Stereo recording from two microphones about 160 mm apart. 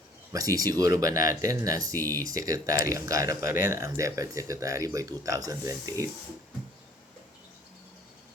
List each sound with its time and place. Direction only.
0.3 s speech: 20° right (ahead or behind)